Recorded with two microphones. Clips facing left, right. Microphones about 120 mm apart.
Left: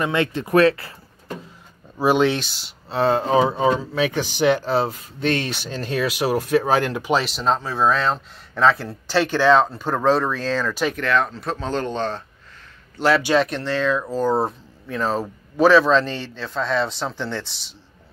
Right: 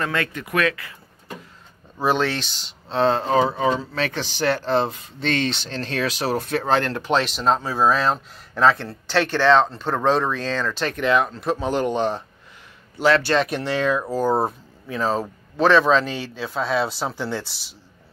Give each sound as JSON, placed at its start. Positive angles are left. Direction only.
{"t": 0.0, "sound": "speech", "side_deg": 25}
{"t": 2.0, "sound": "speech", "side_deg": 10}
{"t": 11.0, "sound": "speech", "side_deg": -10}
{"t": 13.2, "sound": "speech", "side_deg": 5}
{"t": 13.5, "sound": "speech", "side_deg": -15}